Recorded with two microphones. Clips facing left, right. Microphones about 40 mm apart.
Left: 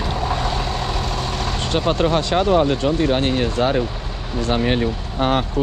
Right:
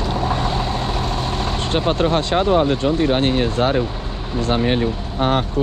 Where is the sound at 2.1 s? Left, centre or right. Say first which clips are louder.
Even; right.